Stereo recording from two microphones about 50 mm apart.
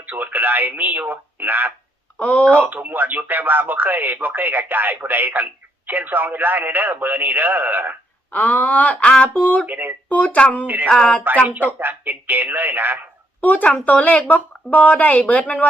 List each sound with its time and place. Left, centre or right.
0.0 s speech: right
2.1 s speech: left
2.5 s speech: right
8.3 s speech: left
9.6 s speech: right
10.2 s speech: left
10.8 s speech: centre
11.4 s speech: right
13.4 s speech: left